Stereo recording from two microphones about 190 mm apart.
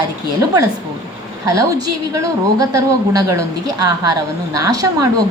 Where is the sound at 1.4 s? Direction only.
15° right (ahead or behind).